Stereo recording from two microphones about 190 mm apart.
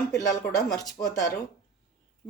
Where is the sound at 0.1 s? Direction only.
20° left (ahead or behind).